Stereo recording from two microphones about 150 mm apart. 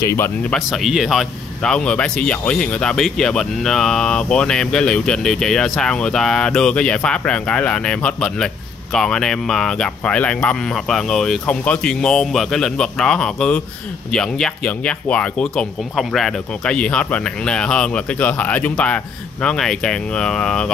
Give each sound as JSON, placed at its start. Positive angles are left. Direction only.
{"t": 0.0, "sound": "speech", "side_deg": 20}
{"t": 0.5, "sound": "speech", "side_deg": 0}